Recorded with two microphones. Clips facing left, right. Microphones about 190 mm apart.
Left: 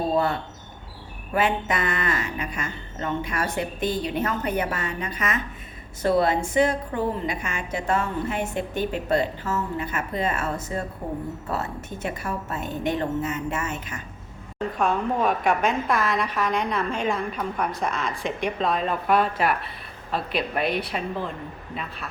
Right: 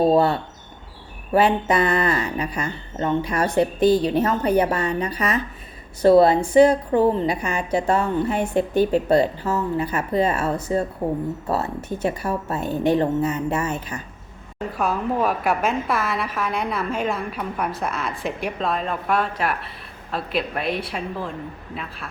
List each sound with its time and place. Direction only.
1.3 s speech: 35° right (ahead or behind)
14.8 s a woman's voice: 5° right (ahead or behind)